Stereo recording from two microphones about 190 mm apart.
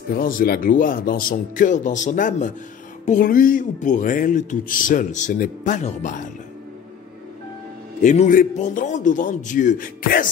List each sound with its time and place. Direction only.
0.1 s speech: 50° left (ahead or behind)
8.0 s a man's voice: 40° left (ahead or behind)